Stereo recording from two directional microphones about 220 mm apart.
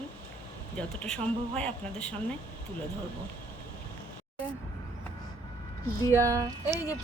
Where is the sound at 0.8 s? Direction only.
5° left (ahead or behind).